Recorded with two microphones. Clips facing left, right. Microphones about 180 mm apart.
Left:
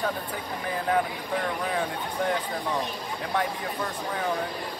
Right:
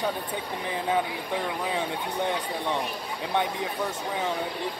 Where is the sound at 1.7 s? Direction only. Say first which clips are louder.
Even; 20° right (ahead or behind).